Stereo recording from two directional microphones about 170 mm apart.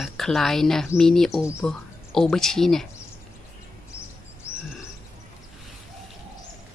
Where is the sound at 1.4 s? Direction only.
15° left (ahead or behind).